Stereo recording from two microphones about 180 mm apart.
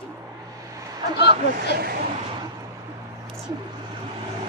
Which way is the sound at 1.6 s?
60° right (ahead or behind).